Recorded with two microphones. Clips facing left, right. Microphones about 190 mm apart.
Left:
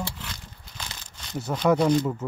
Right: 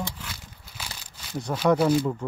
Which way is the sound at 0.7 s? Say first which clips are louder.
Even; 10° right (ahead or behind).